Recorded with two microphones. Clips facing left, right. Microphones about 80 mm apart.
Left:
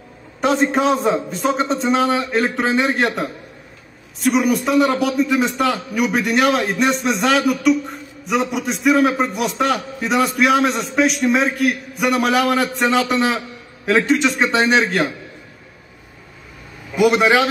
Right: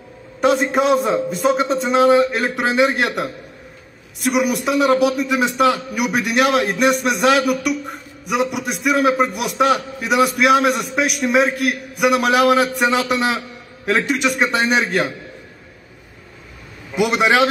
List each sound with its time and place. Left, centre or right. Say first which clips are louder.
0.4 s a man's voice: right 1 dB; centre
4.5 s speech: left 2 dB; right
4.7 s a man's voice: right 3 dB; centre
9.4 s speech: right 1 dB; right
9.7 s a man's voice: right 2 dB; centre
11.5 s a man's voice: left 2 dB; right
12.0 s a man's voice: right 2 dB; centre
16.9 s a man's voice: left 2 dB; centre